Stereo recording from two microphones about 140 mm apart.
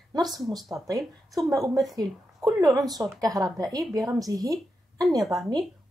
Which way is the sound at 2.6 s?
25° right (ahead or behind).